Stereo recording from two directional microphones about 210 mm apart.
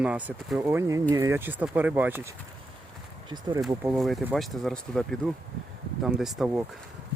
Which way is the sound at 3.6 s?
5° right (ahead or behind).